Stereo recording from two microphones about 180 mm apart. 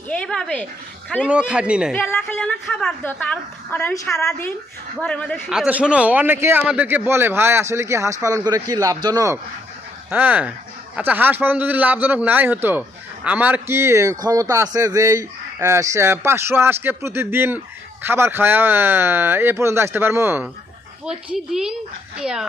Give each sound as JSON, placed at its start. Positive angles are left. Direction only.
{"t": 0.1, "sound": "a child's voice", "side_deg": 5}
{"t": 2.3, "sound": "a child's voice", "side_deg": 5}